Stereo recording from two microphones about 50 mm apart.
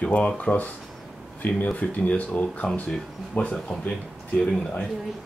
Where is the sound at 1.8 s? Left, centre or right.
Left.